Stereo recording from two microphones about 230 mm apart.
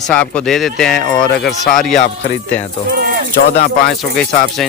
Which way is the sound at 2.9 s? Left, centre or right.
Right.